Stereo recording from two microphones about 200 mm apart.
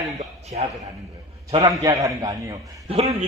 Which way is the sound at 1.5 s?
20° right (ahead or behind).